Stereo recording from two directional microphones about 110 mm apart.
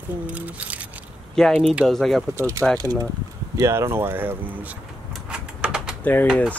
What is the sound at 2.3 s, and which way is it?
Speech, 30° right (ahead or behind).